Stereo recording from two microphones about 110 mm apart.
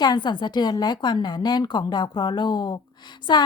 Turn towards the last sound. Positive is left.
turn(degrees=40)  # may be behind; listen again after turning